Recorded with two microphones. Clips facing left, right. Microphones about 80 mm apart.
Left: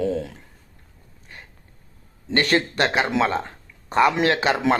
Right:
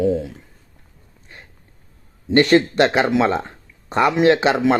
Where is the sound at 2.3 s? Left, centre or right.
Right.